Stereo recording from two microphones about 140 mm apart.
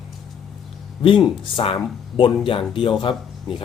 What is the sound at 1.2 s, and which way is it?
Speech, 40° left (ahead or behind).